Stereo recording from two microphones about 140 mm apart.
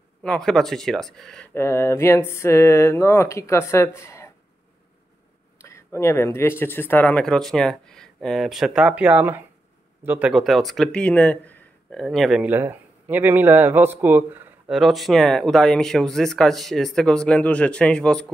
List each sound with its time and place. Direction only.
0.2 s speech: 5° left (ahead or behind)
1.5 s speech: 20° left (ahead or behind)
5.6 s speech: 20° left (ahead or behind); by 12.4 s centre (ahead or behind)
12.4 s speech: 15° right (ahead or behind)
14.8 s speech: centre (ahead or behind)